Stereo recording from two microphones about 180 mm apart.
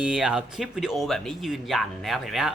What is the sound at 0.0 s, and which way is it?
Speech, 5° right (ahead or behind).